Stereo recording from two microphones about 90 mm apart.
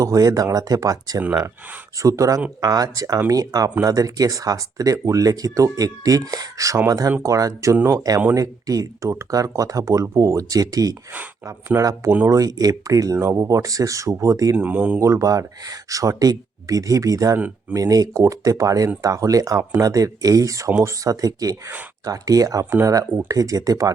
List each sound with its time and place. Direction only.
0.0 s speech: 40° right (ahead or behind)
14.5 s speech: 20° right (ahead or behind)
14.9 s speech: 35° right (ahead or behind)
17.3 s speech: 15° right (ahead or behind)
17.7 s speech: 45° right (ahead or behind)